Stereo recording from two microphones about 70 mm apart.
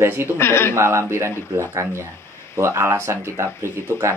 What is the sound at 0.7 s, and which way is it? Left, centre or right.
Speech, right.